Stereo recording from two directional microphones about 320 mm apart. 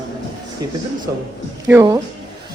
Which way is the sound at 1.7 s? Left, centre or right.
Centre.